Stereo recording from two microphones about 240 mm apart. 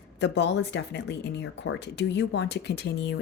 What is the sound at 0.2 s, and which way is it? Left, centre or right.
Speech, left.